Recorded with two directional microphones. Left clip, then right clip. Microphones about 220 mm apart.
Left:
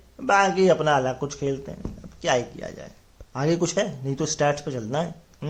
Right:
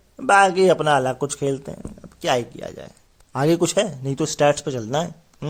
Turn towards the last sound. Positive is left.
turn(degrees=-40)  # may be behind; listen again after turning